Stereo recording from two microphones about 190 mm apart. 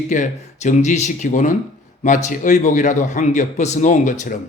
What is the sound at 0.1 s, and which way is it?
Speech, 40° left (ahead or behind).